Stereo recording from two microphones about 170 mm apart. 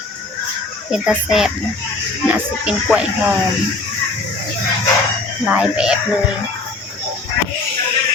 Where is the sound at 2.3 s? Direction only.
5° right (ahead or behind).